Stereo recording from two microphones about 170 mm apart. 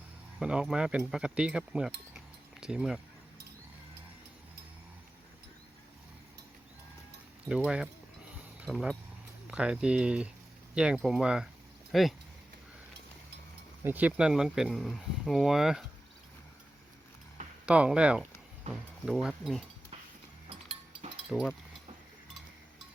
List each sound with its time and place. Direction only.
0.3 s speech: 5° right (ahead or behind)
7.4 s speech: 5° right (ahead or behind)
13.8 s speech: 10° right (ahead or behind)
17.7 s speech: 5° right (ahead or behind)
20.5 s chink: 35° right (ahead or behind)
21.2 s speech: centre (ahead or behind)